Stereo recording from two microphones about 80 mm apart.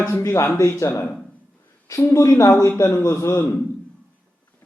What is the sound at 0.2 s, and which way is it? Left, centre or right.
A man's voice, left.